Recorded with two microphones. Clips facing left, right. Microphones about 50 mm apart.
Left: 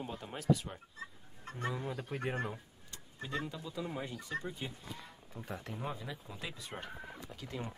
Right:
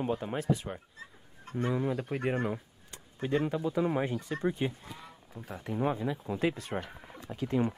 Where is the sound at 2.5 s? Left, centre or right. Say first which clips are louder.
Right 9 dB; right.